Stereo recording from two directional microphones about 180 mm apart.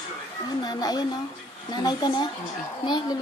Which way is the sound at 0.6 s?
20° left (ahead or behind).